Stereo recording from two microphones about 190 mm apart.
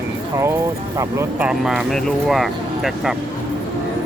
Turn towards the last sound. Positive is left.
turn(degrees=0)  # may be behind; listen again after turning